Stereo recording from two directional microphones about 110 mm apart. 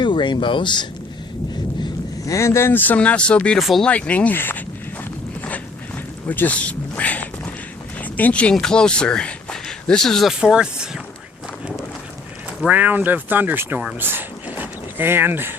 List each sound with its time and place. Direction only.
0.0 s speech: 45° left (ahead or behind)
2.2 s speech: 25° left (ahead or behind); by 3.6 s 10° left (ahead or behind)
3.6 s speech: centre (ahead or behind)
3.8 s speech: 10° left (ahead or behind)
6.2 s speech: 15° left (ahead or behind); by 10.8 s 5° right (ahead or behind)
12.6 s speech: 15° right (ahead or behind)
14.0 s a sound: 20° right (ahead or behind)